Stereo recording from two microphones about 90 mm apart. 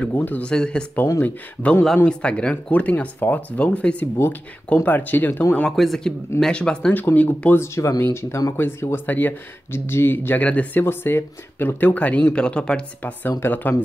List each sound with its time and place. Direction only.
0.0 s speech: 20° left (ahead or behind)
5.7 s speech: centre (ahead or behind); by 7.6 s 20° left (ahead or behind)
7.6 s speech: 30° left (ahead or behind)
8.5 s speech: 25° left (ahead or behind)